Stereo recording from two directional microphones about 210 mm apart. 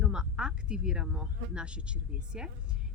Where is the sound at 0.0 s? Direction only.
5° right (ahead or behind).